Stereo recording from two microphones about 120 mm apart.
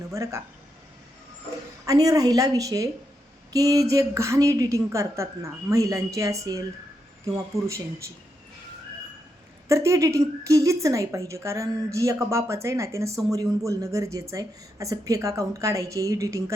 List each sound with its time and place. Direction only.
0.1 s speech: 25° right (ahead or behind)
1.8 s speech: 30° right (ahead or behind)
9.6 s speech: 25° right (ahead or behind)